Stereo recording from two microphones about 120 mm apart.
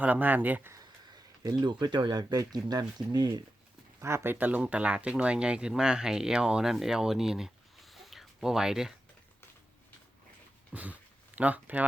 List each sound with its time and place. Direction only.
0.0 s speech: 15° right (ahead or behind)
1.5 s speech: 35° right (ahead or behind)
4.0 s speech: 20° right (ahead or behind); by 8.9 s 5° right (ahead or behind)
10.7 s speech: 10° right (ahead or behind)